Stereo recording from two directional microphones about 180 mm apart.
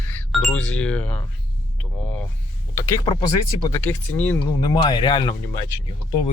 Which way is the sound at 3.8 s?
10° left (ahead or behind).